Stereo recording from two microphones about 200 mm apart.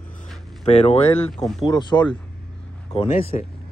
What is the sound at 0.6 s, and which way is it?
Speech, 30° left (ahead or behind).